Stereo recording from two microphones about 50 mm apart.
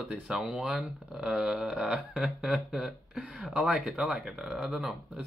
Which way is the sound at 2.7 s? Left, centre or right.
Centre.